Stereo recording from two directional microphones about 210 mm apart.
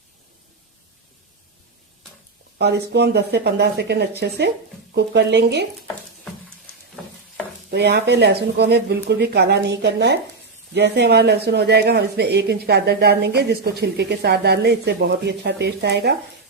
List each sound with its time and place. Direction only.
2.6 s speech: 50° right (ahead or behind)
7.7 s speech: 50° right (ahead or behind)